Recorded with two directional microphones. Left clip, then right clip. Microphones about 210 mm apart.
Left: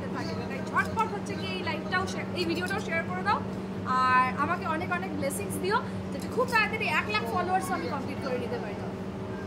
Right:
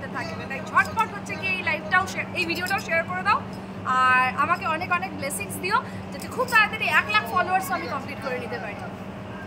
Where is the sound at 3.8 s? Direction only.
5° left (ahead or behind).